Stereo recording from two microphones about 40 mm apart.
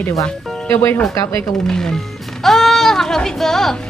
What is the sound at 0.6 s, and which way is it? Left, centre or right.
Speech, left.